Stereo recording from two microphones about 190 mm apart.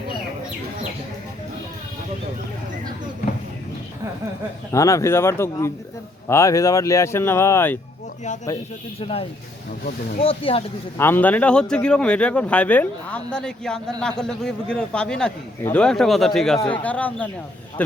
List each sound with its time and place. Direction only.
4.7 s speech: 15° left (ahead or behind)
9.0 s speech: 30° left (ahead or behind)
10.9 s speech: 10° left (ahead or behind)